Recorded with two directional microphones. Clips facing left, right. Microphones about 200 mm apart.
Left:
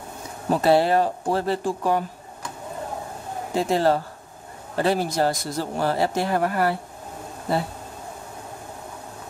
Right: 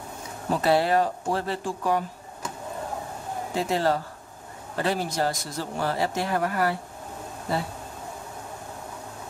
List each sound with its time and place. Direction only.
0.5 s speech: 30° left (ahead or behind)
3.6 s speech: 30° left (ahead or behind)